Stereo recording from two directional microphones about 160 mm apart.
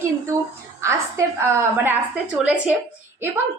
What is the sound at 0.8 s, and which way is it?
A woman's voice, 15° right (ahead or behind).